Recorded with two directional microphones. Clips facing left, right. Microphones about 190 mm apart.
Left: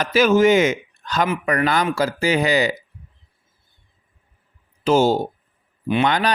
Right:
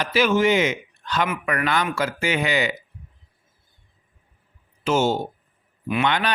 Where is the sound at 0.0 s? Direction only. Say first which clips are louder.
Left 4 dB; 45° left (ahead or behind).